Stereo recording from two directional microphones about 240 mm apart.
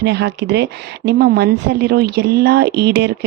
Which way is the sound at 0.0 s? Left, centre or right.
Right.